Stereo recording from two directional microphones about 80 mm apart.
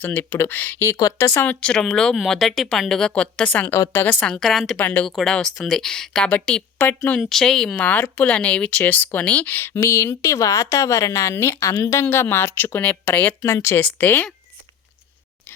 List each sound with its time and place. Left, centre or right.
0.0 s speech: left
0.9 s speech: left
1.3 s speech: left
1.6 s a woman's voice: centre
4.4 s a woman's voice: centre
4.8 s speech: centre
5.0 s a woman's voice: centre; by 7.2 s left
7.2 s a woman's voice: centre
7.8 s speech: centre; by 12.0 s left
12.0 s speech: left
13.4 s speech: left